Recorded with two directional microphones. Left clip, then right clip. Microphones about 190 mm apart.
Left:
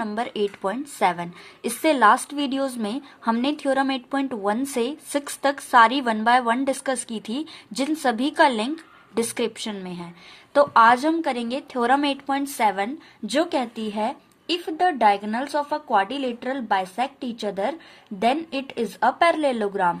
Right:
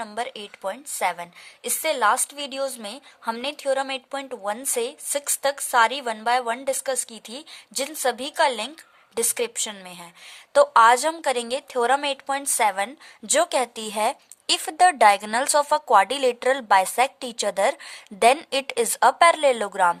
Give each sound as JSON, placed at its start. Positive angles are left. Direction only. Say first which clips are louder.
{"t": 0.0, "sound": "a woman's voice", "louder": "left 5 dB", "side_deg": -20}